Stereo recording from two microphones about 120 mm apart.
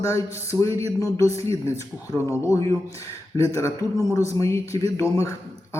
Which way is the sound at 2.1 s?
25° left (ahead or behind).